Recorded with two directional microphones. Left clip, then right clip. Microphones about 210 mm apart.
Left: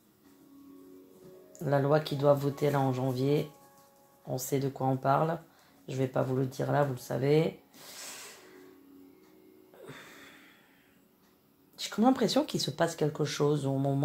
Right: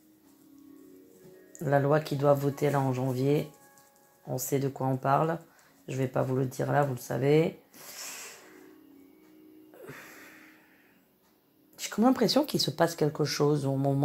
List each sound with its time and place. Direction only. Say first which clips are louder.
1.5 s speech: right 2 dB; 30° right (ahead or behind)
9.8 s music: right 2 dB; 30° right (ahead or behind)
11.7 s speech: right 1 dB; 35° right (ahead or behind)